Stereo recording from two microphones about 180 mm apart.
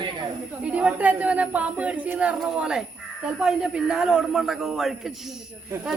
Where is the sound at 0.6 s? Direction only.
5° right (ahead or behind).